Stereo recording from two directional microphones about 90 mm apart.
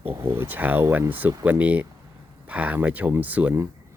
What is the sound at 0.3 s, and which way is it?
Speech, 20° right (ahead or behind).